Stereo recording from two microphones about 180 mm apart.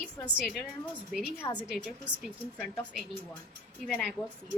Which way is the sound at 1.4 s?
20° left (ahead or behind).